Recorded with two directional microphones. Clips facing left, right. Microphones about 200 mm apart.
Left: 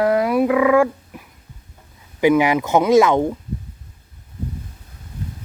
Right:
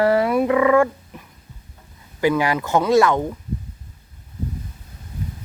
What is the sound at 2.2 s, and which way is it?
Speech, 20° left (ahead or behind).